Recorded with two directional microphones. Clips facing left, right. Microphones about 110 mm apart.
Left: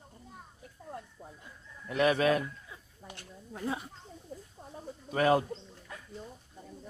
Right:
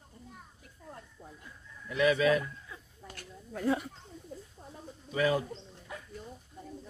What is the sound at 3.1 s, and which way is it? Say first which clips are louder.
Speech: right 3 dB; 20° left (ahead or behind).